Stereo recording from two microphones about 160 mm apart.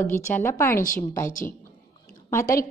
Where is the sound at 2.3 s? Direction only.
20° left (ahead or behind).